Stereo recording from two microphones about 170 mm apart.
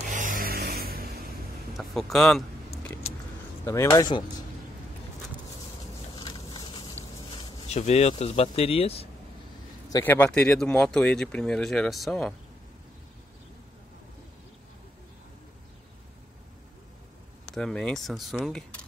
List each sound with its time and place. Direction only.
0.1 s vehicle: 50° right (ahead or behind)
1.8 s speech: centre (ahead or behind)
3.6 s speech: 20° left (ahead or behind)
6.1 s a sound: 25° left (ahead or behind)
7.6 s speech: 40° left (ahead or behind)
9.8 s a man's voice: 20° left (ahead or behind)
10.1 s speech: 10° left (ahead or behind)
17.6 s speech: 5° left (ahead or behind)